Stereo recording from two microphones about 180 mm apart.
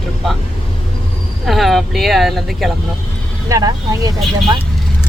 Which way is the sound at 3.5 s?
20° right (ahead or behind).